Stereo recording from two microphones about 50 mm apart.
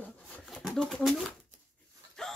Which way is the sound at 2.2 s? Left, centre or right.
Centre.